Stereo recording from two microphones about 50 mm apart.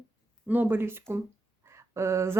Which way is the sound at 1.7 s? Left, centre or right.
Right.